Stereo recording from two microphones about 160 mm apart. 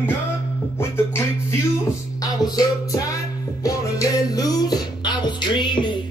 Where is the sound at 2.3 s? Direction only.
25° left (ahead or behind).